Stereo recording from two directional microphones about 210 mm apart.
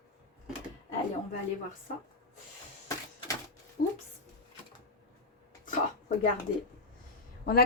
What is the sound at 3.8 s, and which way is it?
Speech, 40° left (ahead or behind).